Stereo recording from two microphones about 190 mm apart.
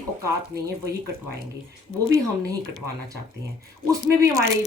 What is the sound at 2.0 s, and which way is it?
Speech, 15° right (ahead or behind).